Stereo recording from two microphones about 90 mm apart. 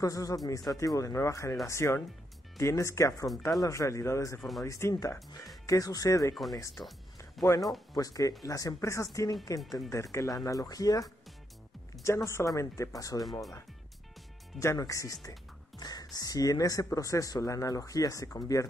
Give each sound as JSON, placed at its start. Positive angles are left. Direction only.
{"t": 0.0, "sound": "speech", "side_deg": 40}
{"t": 4.4, "sound": "speech", "side_deg": 0}
{"t": 4.6, "sound": "speech", "side_deg": 35}
{"t": 7.4, "sound": "speech", "side_deg": 0}
{"t": 7.9, "sound": "speech", "side_deg": 40}
{"t": 14.6, "sound": "speech", "side_deg": 35}